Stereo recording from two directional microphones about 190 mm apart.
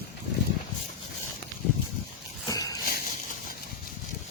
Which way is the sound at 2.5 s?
20° left (ahead or behind).